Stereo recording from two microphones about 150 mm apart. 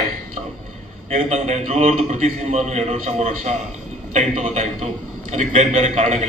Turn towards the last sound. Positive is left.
turn(degrees=-50)  # may be behind; listen again after turning